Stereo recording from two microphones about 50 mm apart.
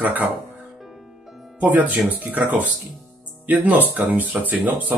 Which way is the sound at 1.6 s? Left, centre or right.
Right.